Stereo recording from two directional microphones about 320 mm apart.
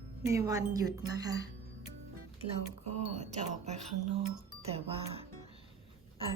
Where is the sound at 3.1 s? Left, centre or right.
Right.